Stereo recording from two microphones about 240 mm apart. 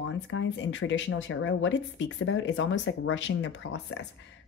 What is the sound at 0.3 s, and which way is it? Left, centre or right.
Speech, left.